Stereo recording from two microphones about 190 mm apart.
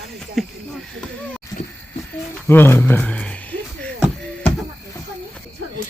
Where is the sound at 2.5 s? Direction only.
10° left (ahead or behind).